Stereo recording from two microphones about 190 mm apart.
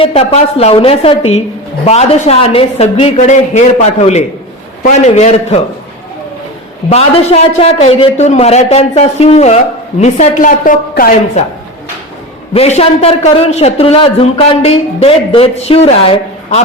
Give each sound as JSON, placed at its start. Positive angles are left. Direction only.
{"t": 0.0, "sound": "a woman's voice", "side_deg": 30}
{"t": 6.9, "sound": "a man's voice", "side_deg": 35}
{"t": 12.5, "sound": "a man's voice", "side_deg": 35}